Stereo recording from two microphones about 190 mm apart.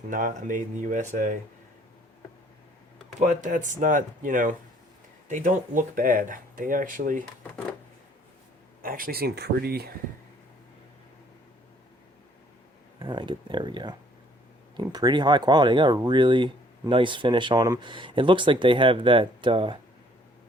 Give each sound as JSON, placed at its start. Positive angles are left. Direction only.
{"t": 0.1, "sound": "speech", "side_deg": -45}
{"t": 3.2, "sound": "speech", "side_deg": -40}
{"t": 8.8, "sound": "speech", "side_deg": -50}
{"t": 13.0, "sound": "speech", "side_deg": -25}